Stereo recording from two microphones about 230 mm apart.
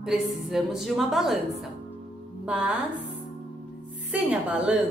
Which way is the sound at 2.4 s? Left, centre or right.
Centre.